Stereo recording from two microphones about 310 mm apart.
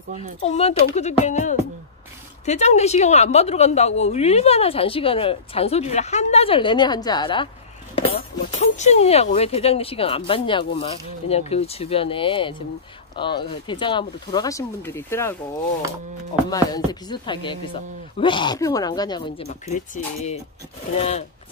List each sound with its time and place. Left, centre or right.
0.4 s speech: centre
16.4 s speech: centre
20.9 s speech: centre